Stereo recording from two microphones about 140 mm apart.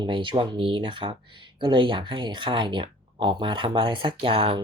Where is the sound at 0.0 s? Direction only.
35° right (ahead or behind).